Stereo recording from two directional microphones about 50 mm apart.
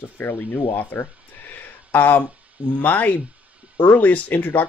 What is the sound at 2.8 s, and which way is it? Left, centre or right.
Speech, left.